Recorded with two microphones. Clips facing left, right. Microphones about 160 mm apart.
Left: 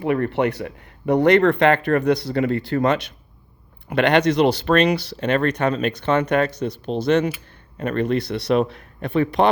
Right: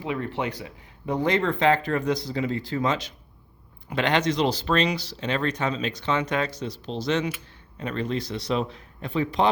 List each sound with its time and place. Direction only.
0.0 s speech: 60° left (ahead or behind)